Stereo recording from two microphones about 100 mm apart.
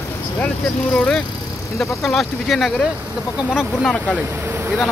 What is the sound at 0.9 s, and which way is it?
Speech, 10° left (ahead or behind).